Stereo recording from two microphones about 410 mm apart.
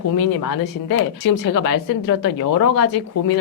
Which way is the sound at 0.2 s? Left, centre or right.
Left.